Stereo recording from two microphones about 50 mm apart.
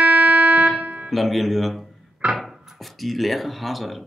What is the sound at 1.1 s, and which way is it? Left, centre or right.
Speech, centre.